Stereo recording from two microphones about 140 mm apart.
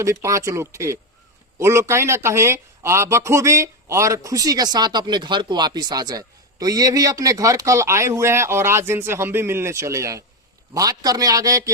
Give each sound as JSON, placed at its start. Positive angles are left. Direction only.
{"t": 0.0, "sound": "a man's voice", "side_deg": -20}